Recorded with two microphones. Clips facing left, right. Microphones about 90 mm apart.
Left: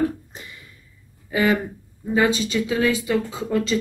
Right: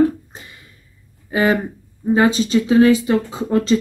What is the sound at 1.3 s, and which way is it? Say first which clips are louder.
Speech: right 3 dB; 40° right (ahead or behind).